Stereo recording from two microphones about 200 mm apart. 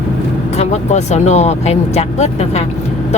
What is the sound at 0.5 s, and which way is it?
Speech, 35° left (ahead or behind).